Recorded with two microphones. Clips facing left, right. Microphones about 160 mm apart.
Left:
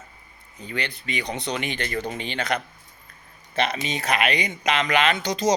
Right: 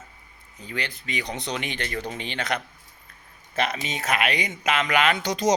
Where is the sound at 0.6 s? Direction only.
5° right (ahead or behind).